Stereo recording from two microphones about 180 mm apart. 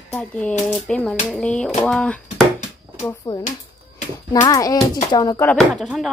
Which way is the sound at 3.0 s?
20° left (ahead or behind).